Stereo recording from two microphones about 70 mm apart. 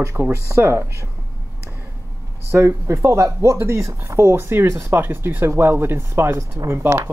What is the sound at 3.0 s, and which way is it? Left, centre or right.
Speech, right.